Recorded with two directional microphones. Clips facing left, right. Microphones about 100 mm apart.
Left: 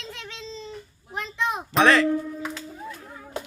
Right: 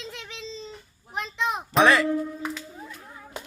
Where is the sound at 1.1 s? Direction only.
20° right (ahead or behind).